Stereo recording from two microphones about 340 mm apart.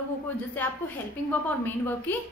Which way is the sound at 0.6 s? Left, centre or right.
Centre.